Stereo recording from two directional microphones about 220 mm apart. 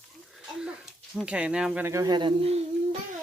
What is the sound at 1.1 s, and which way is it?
Speech, 5° right (ahead or behind).